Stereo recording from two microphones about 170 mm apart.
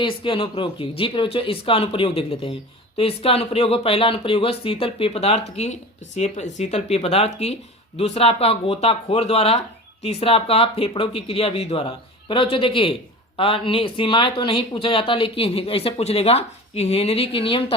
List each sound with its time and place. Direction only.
0.0 s a man's voice: 30° left (ahead or behind)